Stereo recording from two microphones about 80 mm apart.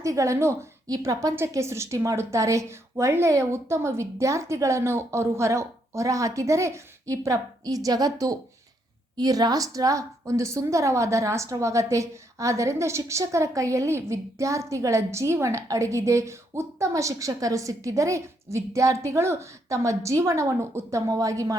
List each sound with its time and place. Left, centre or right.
0.0 s a woman's voice: right
0.9 s a woman's voice: right
1.4 s a woman's voice: right